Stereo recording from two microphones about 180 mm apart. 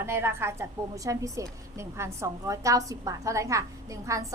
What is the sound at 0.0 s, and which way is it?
A woman's voice, 15° right (ahead or behind).